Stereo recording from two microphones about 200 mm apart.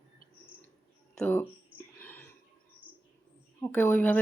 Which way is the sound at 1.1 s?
5° left (ahead or behind).